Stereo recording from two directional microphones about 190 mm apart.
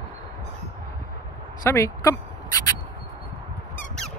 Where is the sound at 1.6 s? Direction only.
15° left (ahead or behind).